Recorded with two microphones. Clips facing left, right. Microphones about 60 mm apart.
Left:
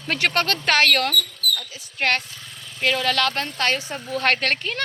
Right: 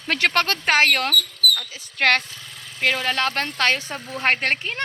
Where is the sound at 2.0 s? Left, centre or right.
Right.